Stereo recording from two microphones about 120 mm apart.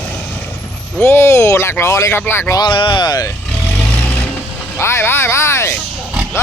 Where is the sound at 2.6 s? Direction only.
45° left (ahead or behind).